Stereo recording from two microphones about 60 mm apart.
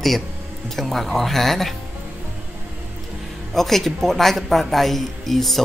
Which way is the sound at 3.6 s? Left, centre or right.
Centre.